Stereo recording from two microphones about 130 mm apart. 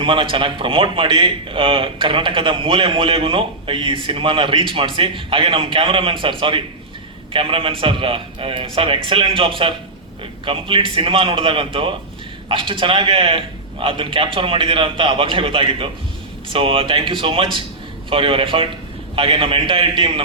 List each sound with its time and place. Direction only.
0.0 s speech: 40° right (ahead or behind)
7.3 s a man's voice: 45° right (ahead or behind)